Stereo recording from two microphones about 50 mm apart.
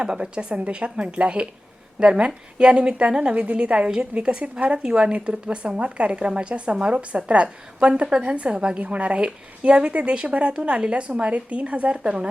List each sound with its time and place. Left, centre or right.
0.0 s a woman's voice: centre